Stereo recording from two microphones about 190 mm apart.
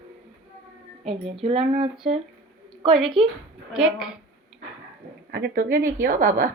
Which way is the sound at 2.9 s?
Centre (ahead or behind).